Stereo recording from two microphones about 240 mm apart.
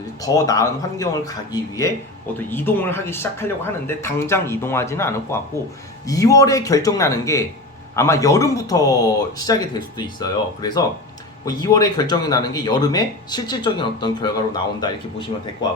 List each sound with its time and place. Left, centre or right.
0.2 s speech: centre